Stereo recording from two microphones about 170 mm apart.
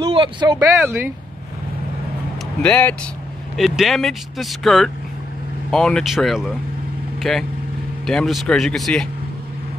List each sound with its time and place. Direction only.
0.0 s speech: 25° right (ahead or behind)
0.7 s speech: 15° right (ahead or behind)
2.6 s speech: 5° left (ahead or behind)